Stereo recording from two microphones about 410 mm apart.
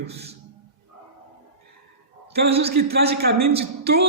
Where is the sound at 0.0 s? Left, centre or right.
Centre.